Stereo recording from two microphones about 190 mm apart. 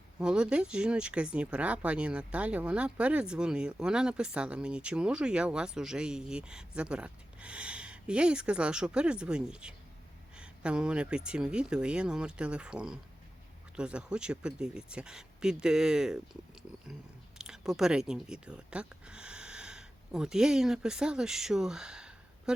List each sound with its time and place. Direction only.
0.2 s speech: 5° right (ahead or behind)